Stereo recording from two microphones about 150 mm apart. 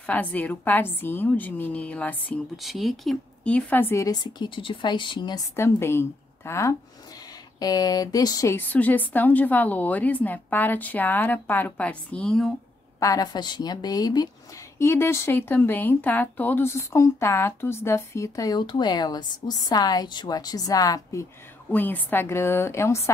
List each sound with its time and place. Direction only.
0.0 s speech: 10° left (ahead or behind)
2.5 s speech: centre (ahead or behind); by 5.4 s 30° left (ahead or behind)
5.6 s speech: 15° left (ahead or behind)
13.0 s speech: 25° left (ahead or behind)
21.7 s speech: 10° left (ahead or behind)